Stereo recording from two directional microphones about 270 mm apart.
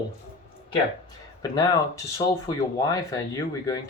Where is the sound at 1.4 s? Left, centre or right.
Centre.